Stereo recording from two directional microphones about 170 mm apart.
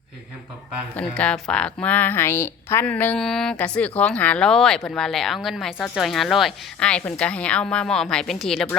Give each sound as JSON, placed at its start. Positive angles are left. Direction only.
{"t": 0.9, "sound": "a woman's voice", "side_deg": 5}